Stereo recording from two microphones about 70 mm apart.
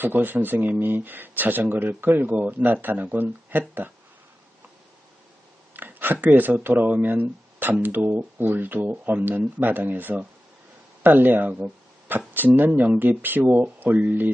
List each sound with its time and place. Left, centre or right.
0.0 s speech: right
5.7 s a sound: right
6.2 s speech: right